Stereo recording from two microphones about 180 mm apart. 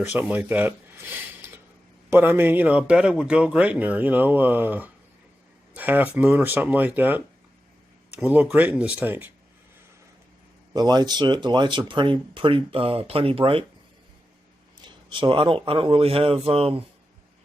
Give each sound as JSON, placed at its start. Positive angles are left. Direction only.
{"t": 0.0, "sound": "a man's voice", "side_deg": -10}
{"t": 10.8, "sound": "speech", "side_deg": -20}
{"t": 14.8, "sound": "speech", "side_deg": -25}